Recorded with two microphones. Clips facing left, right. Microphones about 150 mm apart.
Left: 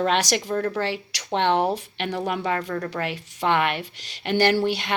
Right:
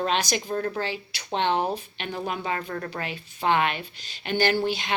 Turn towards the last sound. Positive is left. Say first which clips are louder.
# left 3 dB
turn(degrees=65)  # may be behind; listen again after turning